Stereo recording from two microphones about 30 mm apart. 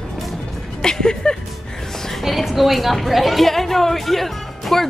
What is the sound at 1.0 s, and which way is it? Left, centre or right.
Music, left.